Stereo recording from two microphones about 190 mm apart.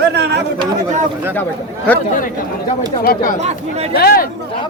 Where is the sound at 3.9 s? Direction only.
50° left (ahead or behind).